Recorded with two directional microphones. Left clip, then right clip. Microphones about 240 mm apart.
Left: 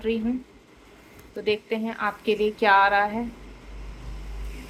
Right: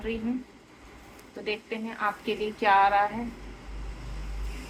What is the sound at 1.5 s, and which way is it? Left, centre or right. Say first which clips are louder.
A woman's voice: left 7 dB; left.